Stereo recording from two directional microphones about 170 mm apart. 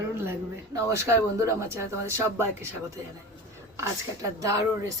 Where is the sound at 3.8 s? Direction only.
20° right (ahead or behind).